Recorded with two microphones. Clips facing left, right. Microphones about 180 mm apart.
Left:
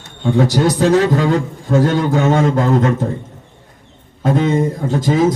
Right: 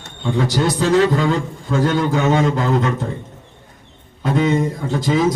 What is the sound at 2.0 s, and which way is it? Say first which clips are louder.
Speech: left 2 dB; 40° left (ahead or behind).